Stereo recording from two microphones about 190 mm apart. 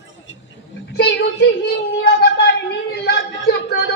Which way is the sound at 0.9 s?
60° left (ahead or behind).